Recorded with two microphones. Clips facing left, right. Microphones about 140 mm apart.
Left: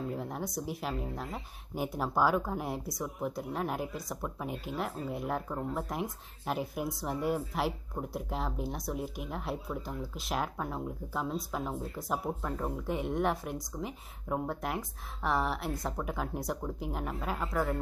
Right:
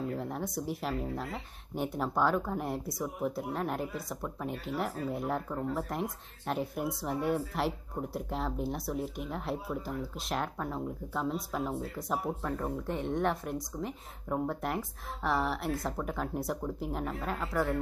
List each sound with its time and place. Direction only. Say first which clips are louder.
0.1 s speech: right 1 dB; centre (ahead or behind)
5.0 s speech: right 2 dB; 75° right (ahead or behind)
5.7 s speech: right 1 dB; centre (ahead or behind)